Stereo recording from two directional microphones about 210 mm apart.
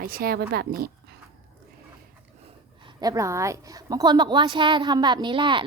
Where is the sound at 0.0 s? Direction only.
45° right (ahead or behind).